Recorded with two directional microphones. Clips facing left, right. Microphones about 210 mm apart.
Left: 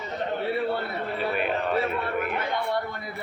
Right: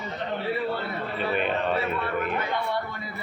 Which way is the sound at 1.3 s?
5° left (ahead or behind).